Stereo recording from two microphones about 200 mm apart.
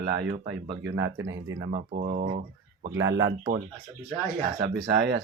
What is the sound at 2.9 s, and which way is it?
Speech, 70° right (ahead or behind).